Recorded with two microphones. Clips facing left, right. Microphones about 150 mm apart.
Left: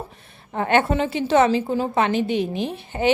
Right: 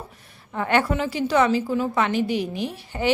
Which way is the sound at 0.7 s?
25° left (ahead or behind).